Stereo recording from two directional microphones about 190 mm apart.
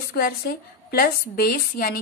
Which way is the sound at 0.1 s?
55° left (ahead or behind).